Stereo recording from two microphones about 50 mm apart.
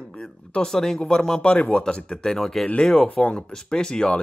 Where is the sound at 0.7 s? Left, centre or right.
Centre.